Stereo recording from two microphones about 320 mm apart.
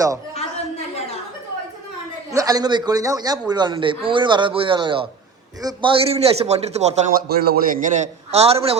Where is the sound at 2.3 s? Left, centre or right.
Centre.